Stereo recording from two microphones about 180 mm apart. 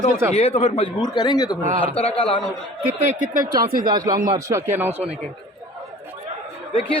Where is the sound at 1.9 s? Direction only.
30° left (ahead or behind).